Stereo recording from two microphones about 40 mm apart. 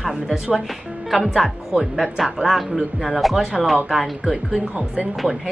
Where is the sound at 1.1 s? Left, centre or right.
Centre.